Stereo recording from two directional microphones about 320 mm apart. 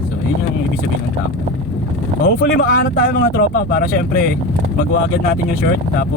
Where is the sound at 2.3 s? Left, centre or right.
Left.